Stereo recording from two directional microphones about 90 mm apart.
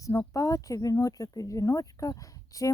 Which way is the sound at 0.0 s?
35° left (ahead or behind).